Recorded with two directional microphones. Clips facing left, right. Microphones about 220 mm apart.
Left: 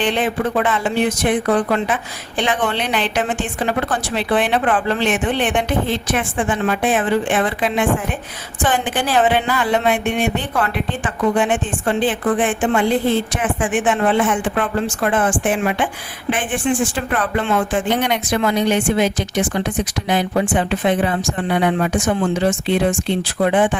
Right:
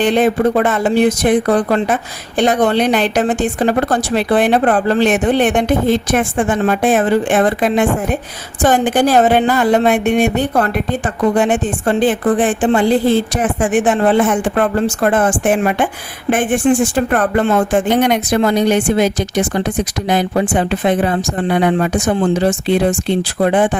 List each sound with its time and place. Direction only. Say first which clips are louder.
0.0 s speech: right 6 dB; 40° right (ahead or behind)